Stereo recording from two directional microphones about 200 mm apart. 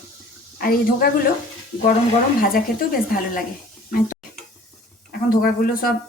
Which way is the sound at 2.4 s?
45° left (ahead or behind).